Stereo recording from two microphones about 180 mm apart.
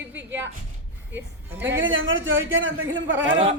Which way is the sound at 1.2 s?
85° right.